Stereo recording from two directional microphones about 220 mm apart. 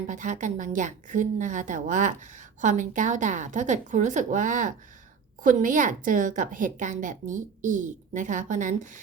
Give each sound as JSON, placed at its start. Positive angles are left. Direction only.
{"t": 0.1, "sound": "a woman's voice", "side_deg": -35}